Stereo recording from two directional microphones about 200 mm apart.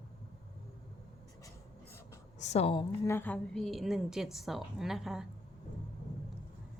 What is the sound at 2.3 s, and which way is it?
Speech, 35° left (ahead or behind).